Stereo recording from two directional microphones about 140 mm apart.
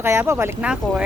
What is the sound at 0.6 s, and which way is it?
Speech, 5° right (ahead or behind).